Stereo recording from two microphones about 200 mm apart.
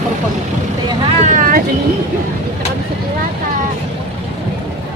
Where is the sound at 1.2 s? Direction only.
40° right (ahead or behind).